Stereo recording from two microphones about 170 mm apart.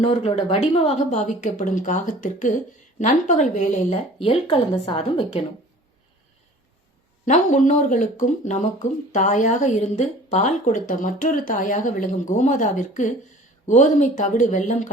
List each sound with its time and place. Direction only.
0.0 s speech: 35° left (ahead or behind)
4.2 s a woman's voice: 35° left (ahead or behind)
7.3 s speech: 50° left (ahead or behind)